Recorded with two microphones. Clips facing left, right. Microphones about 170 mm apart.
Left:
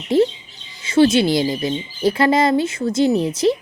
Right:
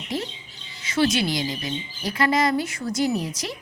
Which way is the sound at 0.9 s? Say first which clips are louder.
Left 8 dB; 25° left (ahead or behind).